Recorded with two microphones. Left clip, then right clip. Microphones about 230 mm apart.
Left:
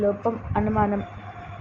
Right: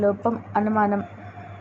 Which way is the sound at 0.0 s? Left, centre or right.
Centre.